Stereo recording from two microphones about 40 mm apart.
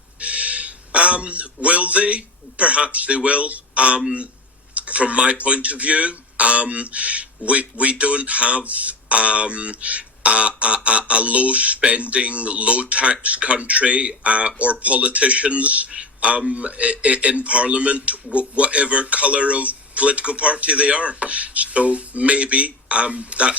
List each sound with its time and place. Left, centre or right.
0.2 s a man's voice: right